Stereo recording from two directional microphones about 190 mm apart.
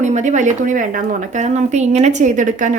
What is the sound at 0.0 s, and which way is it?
A woman's voice, 40° right (ahead or behind).